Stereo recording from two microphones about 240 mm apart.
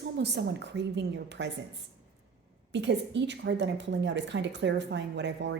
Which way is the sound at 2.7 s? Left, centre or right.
Right.